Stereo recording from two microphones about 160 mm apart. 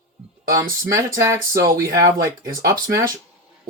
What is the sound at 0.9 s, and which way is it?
Speech, 20° right (ahead or behind).